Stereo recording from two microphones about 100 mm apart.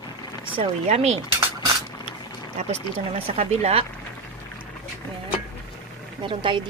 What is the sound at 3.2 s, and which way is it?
Speech, 85° right.